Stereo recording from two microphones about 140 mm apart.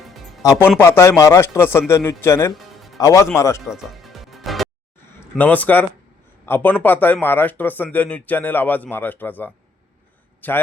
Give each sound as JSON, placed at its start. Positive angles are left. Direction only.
{"t": 0.0, "sound": "music", "side_deg": 0}
{"t": 0.4, "sound": "speech", "side_deg": 25}
{"t": 3.6, "sound": "music", "side_deg": 0}
{"t": 5.2, "sound": "a man's voice", "side_deg": 10}